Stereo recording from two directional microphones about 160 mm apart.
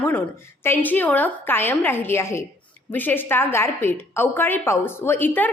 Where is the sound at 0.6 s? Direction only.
10° left (ahead or behind).